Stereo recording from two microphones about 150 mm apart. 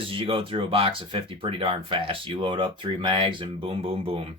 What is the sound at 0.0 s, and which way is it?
Speech, 35° right (ahead or behind).